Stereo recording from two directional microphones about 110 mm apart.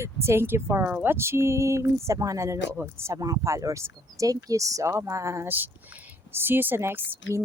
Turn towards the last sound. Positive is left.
turn(degrees=-20)  # may be behind; listen again after turning